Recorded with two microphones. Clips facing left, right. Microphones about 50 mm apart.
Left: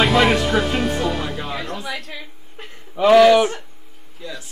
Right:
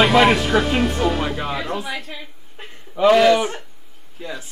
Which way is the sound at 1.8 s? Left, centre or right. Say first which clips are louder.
Right 1 dB; centre.